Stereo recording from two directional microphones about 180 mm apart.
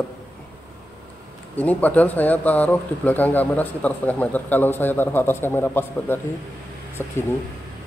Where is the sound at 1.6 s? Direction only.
10° left (ahead or behind).